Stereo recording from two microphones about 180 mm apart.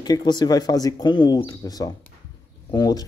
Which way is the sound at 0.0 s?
25° left (ahead or behind).